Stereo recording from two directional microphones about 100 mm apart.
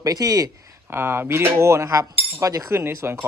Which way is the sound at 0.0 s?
35° right (ahead or behind).